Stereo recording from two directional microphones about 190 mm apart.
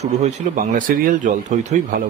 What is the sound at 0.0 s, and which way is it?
Speech, 35° right (ahead or behind).